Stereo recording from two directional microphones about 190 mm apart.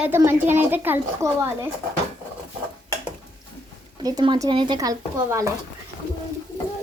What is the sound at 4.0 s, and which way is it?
Speech, 20° right (ahead or behind).